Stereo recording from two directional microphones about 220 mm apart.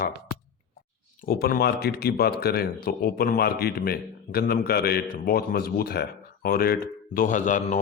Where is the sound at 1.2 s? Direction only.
40° left (ahead or behind).